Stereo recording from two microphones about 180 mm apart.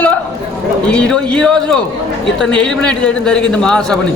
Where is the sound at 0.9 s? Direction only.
5° left (ahead or behind).